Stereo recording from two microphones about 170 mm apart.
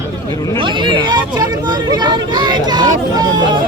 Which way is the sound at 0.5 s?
30° right (ahead or behind).